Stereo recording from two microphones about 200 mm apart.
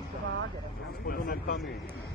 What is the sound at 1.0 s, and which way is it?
Speech, 45° left (ahead or behind).